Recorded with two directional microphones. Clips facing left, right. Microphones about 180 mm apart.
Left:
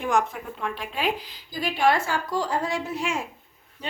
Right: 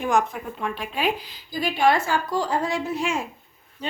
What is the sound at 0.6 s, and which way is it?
A woman's voice, 15° right (ahead or behind).